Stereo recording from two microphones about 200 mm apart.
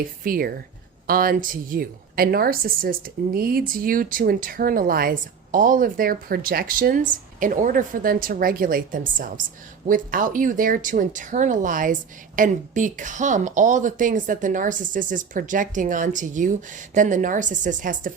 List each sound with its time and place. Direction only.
0.3 s a woman's voice: 50° right (ahead or behind)